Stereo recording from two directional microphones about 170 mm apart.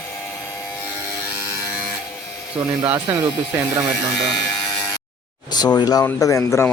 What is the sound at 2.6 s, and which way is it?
Speech, 5° right (ahead or behind).